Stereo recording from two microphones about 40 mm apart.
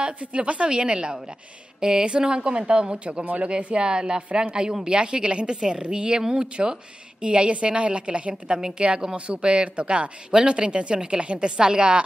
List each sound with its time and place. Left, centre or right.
0.0 s speech: right